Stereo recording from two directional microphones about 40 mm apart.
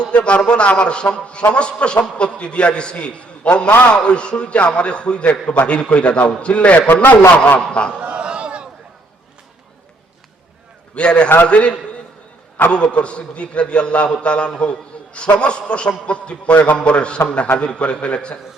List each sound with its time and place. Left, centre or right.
0.1 s a man's voice: left
6.7 s a man's voice: left
7.9 s a sound: right
10.9 s a man's voice: left